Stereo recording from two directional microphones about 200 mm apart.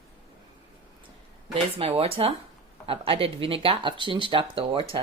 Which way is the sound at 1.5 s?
30° right (ahead or behind).